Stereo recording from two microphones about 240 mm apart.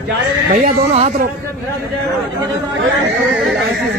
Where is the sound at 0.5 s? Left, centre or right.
Right.